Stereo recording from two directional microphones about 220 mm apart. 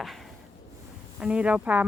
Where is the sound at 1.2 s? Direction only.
5° right (ahead or behind).